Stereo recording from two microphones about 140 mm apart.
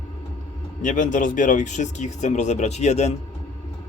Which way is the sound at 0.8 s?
65° left (ahead or behind).